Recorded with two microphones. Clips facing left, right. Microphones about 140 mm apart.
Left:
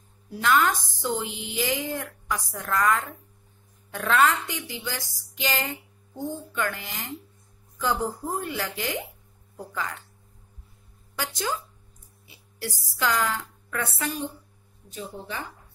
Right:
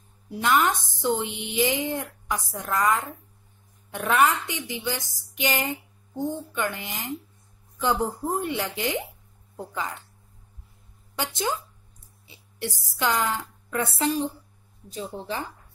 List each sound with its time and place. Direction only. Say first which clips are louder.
0.3 s a woman's voice: even; 20° right (ahead or behind)
11.1 s a woman's voice: right 2 dB; 25° right (ahead or behind)